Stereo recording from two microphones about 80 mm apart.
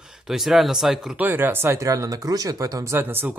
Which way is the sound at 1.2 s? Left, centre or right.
Right.